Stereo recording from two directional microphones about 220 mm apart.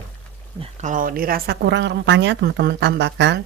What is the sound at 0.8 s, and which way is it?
Speech, 40° right (ahead or behind).